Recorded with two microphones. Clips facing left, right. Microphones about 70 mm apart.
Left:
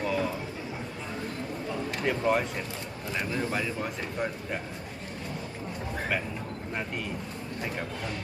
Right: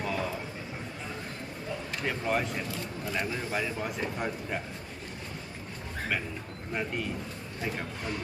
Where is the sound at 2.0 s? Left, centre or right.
Centre.